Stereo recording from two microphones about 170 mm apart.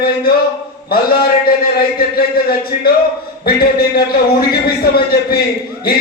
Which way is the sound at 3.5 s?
60° left (ahead or behind).